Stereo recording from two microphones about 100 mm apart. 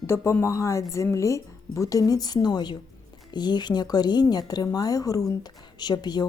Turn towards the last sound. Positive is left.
turn(degrees=45)  # may be behind; listen again after turning